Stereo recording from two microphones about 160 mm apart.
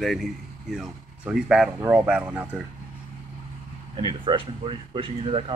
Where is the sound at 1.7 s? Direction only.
15° right (ahead or behind).